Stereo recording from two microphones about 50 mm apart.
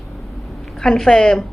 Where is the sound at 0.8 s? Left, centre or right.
Centre.